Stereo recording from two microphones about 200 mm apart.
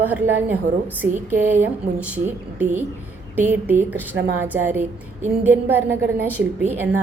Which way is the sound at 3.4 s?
10° right (ahead or behind).